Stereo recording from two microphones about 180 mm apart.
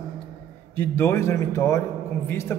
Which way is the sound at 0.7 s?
15° left (ahead or behind).